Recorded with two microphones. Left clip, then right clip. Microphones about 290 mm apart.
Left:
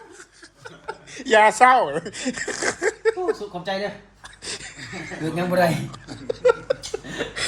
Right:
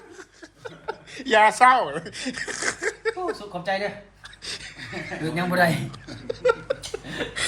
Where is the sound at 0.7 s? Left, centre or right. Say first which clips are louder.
Right 1 dB; centre.